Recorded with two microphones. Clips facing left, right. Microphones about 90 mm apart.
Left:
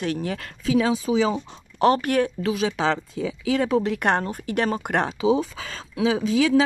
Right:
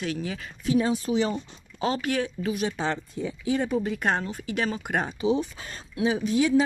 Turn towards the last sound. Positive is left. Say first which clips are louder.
# left 3 dB
turn(degrees=90)